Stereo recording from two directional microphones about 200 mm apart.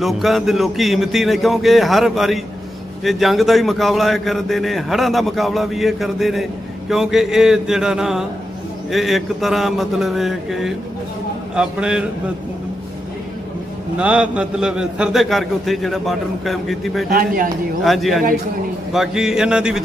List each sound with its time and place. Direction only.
0.0 s a man's voice: centre (ahead or behind)
13.9 s a man's voice: 5° right (ahead or behind)
17.1 s speech: 45° right (ahead or behind)
17.8 s a man's voice: centre (ahead or behind)